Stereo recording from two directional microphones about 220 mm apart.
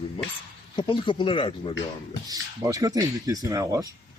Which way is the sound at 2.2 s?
15° right (ahead or behind).